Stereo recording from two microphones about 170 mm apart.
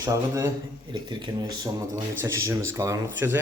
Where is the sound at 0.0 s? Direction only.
20° right (ahead or behind).